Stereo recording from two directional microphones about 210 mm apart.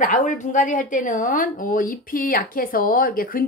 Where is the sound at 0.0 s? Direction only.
40° left (ahead or behind).